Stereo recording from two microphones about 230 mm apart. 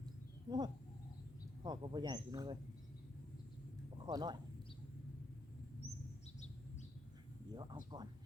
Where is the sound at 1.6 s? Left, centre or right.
Centre.